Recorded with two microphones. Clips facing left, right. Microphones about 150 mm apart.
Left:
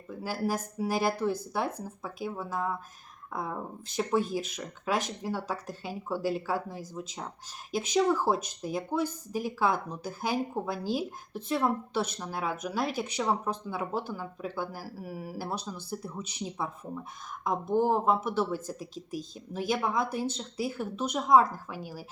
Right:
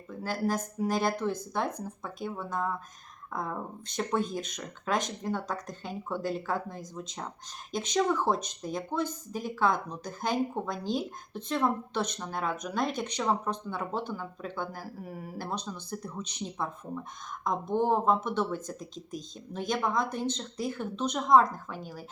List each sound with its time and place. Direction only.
0.1 s speech: 10° left (ahead or behind)